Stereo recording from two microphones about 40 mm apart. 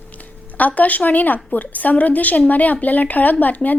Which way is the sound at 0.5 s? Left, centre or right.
Left.